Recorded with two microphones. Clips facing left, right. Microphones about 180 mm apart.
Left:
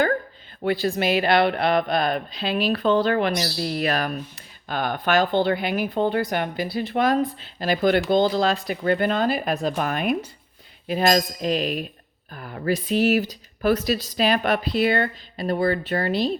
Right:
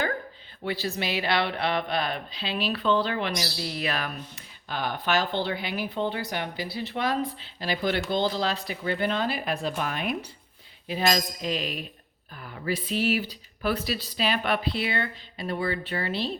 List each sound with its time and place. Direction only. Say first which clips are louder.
0.6 s speech: left 8 dB; 50° left (ahead or behind)